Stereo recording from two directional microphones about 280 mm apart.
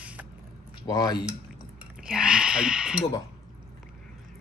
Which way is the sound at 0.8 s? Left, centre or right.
Centre.